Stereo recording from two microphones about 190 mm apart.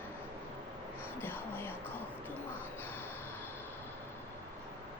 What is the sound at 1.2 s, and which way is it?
Speech, 10° left (ahead or behind).